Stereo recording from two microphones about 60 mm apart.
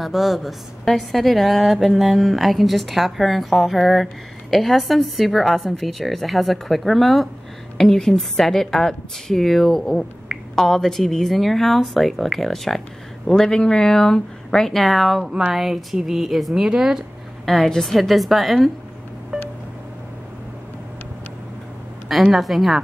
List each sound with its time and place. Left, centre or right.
0.0 s a woman's voice: centre
17.5 s a woman's voice: centre
19.3 s vehicle: centre
22.3 s a woman's voice: centre